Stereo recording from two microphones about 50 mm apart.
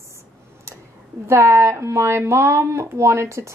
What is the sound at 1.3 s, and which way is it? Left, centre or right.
A woman's voice, right.